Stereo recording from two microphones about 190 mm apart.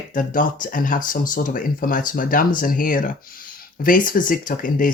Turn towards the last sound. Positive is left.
turn(degrees=45)  # may be behind; listen again after turning